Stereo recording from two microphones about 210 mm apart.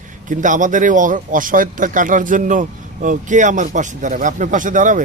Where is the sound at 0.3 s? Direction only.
35° right (ahead or behind).